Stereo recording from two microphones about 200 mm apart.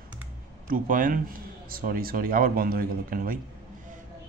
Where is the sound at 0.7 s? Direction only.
40° right (ahead or behind).